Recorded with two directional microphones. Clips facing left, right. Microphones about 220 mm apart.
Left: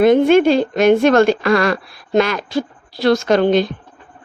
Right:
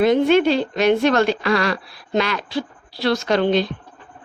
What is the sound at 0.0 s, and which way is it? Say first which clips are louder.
A woman's voice: left 4 dB; 50° left (ahead or behind).